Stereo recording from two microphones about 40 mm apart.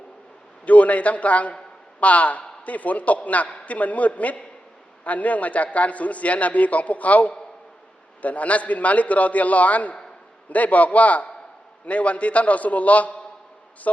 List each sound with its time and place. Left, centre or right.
0.6 s a man's voice: left